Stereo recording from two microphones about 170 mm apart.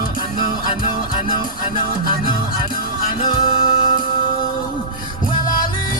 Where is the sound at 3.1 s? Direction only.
35° left (ahead or behind).